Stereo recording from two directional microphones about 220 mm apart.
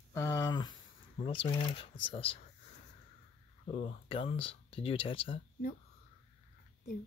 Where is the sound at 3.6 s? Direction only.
25° left (ahead or behind).